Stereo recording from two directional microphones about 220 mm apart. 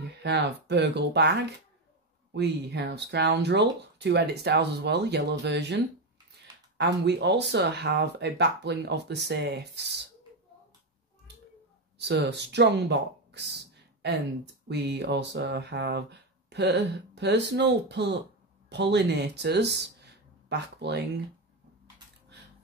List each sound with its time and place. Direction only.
0.2 s speech: 50° right (ahead or behind)
2.3 s speech: 50° right (ahead or behind)
6.8 s speech: 50° right (ahead or behind)
12.0 s speech: 50° right (ahead or behind)